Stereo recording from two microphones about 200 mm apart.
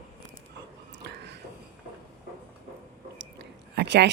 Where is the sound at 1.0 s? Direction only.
55° right (ahead or behind).